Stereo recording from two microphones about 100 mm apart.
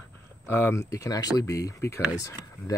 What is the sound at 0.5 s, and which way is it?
Speech, 30° left (ahead or behind).